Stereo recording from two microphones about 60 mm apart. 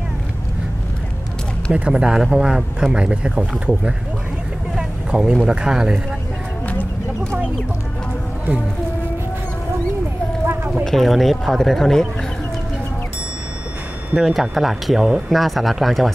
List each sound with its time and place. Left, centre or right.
1.7 s speech: centre
10.4 s clip-clop: right
10.7 s speech: centre
14.1 s speech: centre